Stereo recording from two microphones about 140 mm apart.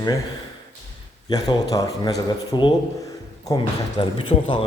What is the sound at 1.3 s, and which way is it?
Speech, 25° left (ahead or behind).